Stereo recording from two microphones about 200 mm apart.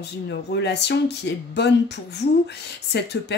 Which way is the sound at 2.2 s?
30° left (ahead or behind).